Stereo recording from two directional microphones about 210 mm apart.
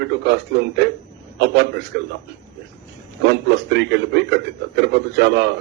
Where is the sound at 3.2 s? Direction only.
55° right (ahead or behind).